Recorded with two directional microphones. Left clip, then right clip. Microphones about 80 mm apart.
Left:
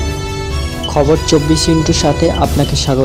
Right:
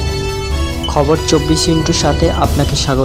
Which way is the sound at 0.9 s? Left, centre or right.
Centre.